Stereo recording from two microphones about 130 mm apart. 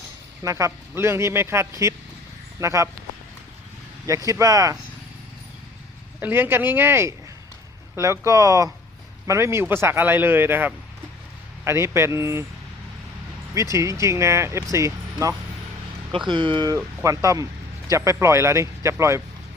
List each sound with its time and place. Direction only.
0.4 s speech: 25° right (ahead or behind)
4.3 s speech: 25° right (ahead or behind)
6.1 s a man's voice: 15° right (ahead or behind)
13.5 s speech: 25° right (ahead or behind)
16.1 s speech: 40° right (ahead or behind)
16.7 s speech: 25° right (ahead or behind)